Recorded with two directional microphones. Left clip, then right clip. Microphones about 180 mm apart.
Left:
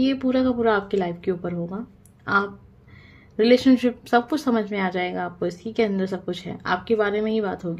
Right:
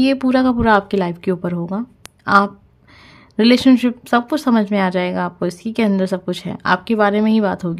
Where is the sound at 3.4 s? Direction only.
40° right (ahead or behind).